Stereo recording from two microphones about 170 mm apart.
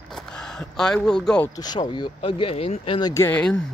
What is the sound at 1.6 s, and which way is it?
Speech, 25° left (ahead or behind).